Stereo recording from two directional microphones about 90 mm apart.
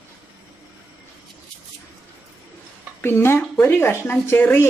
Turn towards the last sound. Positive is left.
turn(degrees=25)  # may be behind; listen again after turning